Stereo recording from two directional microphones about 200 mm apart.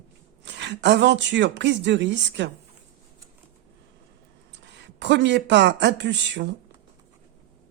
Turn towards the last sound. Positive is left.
turn(degrees=-60)  # may be behind; listen again after turning